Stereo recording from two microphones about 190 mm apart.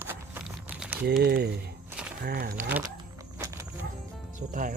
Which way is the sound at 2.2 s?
55° right (ahead or behind).